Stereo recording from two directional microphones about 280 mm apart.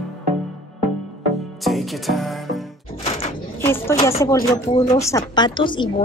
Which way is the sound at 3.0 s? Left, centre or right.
Left.